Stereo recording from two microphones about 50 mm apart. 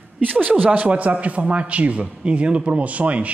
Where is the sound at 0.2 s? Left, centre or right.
Right.